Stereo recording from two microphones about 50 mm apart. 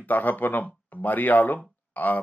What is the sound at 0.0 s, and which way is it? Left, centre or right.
Speech, left.